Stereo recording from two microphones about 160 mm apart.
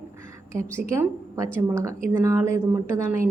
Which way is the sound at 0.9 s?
20° right (ahead or behind).